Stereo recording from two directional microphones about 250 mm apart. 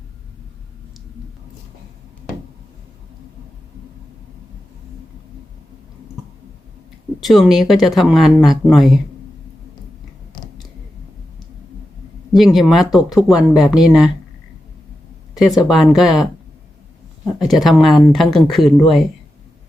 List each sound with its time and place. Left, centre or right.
7.2 s speech: centre
12.3 s speech: centre
15.4 s speech: centre
17.4 s speech: centre